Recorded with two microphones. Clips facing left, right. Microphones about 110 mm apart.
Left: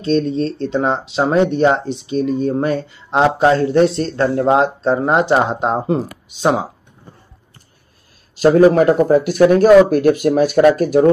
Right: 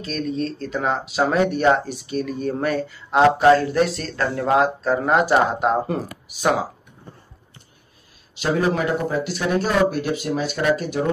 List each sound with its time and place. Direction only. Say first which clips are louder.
0.0 s speech: left 8 dB; 30° left (ahead or behind)
8.4 s speech: left 11 dB; 45° left (ahead or behind)